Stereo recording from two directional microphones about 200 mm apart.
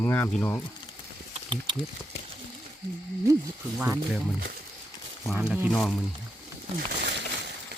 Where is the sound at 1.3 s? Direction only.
25° right (ahead or behind).